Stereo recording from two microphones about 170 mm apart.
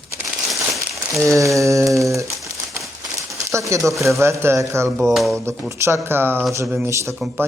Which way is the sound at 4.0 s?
Centre (ahead or behind).